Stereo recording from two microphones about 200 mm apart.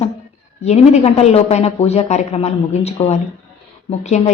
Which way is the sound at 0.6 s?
35° left (ahead or behind).